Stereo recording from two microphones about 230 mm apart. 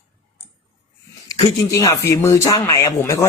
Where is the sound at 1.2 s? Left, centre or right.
Centre.